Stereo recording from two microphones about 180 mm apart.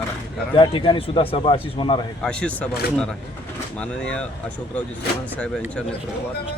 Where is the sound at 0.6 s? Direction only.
30° left (ahead or behind).